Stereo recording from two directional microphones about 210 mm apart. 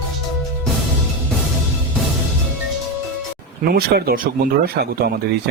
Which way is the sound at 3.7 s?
45° right (ahead or behind).